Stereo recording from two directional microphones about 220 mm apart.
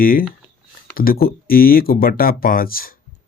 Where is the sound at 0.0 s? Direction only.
40° left (ahead or behind).